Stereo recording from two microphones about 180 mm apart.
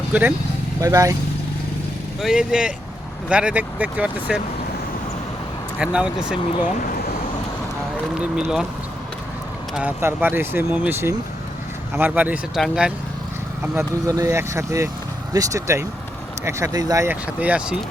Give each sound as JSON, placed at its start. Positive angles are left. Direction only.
{"t": 0.1, "sound": "speech", "side_deg": -10}
{"t": 2.2, "sound": "speech", "side_deg": -5}
{"t": 5.8, "sound": "speech", "side_deg": -5}
{"t": 8.1, "sound": "speech", "side_deg": -5}
{"t": 9.7, "sound": "speech", "side_deg": -10}
{"t": 13.6, "sound": "speech", "side_deg": -15}